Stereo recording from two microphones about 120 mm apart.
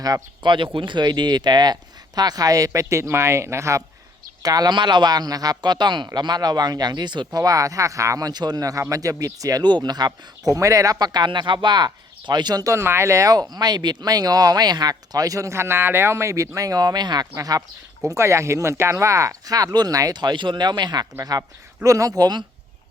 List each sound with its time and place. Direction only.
0.0 s speech: 35° right (ahead or behind)
22.2 s speech: 40° right (ahead or behind)